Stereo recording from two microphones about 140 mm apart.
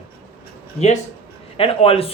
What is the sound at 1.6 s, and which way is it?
Speech, 40° left (ahead or behind).